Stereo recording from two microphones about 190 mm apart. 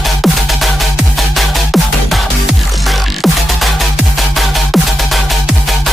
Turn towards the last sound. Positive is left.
turn(degrees=0)  # may be behind; listen again after turning